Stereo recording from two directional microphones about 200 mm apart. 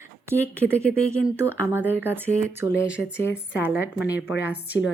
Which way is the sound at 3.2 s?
60° left (ahead or behind).